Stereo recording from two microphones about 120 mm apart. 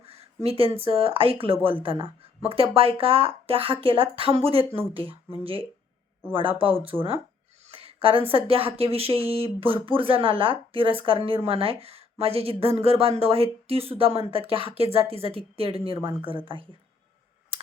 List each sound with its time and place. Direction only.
0.4 s speech: 50° right (ahead or behind)
6.3 s speech: 45° right (ahead or behind)
7.8 s a woman's voice: 50° right (ahead or behind)